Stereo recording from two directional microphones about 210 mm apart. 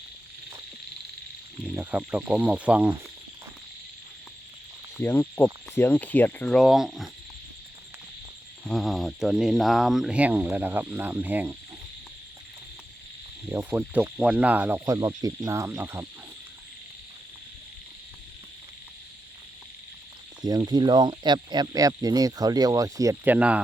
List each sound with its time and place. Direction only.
1.6 s speech: 5° right (ahead or behind)
4.9 s speech: 10° left (ahead or behind)
8.6 s speech: centre (ahead or behind)
13.5 s speech: 10° right (ahead or behind)
20.4 s speech: 20° right (ahead or behind)